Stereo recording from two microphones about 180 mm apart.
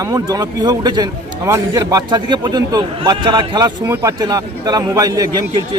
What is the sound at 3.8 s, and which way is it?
A man's voice, 15° right (ahead or behind).